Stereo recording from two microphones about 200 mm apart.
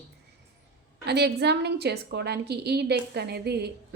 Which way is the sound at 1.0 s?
55° right (ahead or behind).